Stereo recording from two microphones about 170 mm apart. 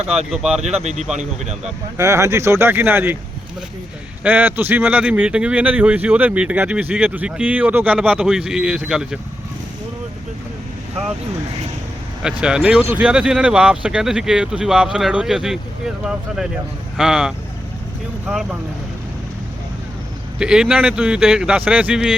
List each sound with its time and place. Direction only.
0.3 s speech: 5° right (ahead or behind)
0.6 s speech: 40° right (ahead or behind)
2.0 s speech: 20° right (ahead or behind)
4.2 s speech: 10° right (ahead or behind)
12.2 s speech: 5° right (ahead or behind)
20.4 s speech: 5° right (ahead or behind)